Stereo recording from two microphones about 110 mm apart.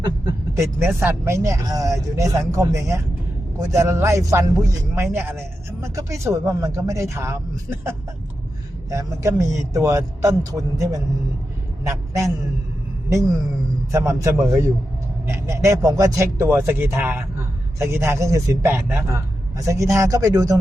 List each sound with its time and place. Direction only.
0.5 s a man's voice: 25° right (ahead or behind)